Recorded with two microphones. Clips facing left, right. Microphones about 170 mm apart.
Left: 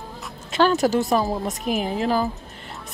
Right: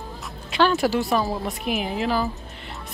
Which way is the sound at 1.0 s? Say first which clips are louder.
Left 2 dB; 20° left (ahead or behind).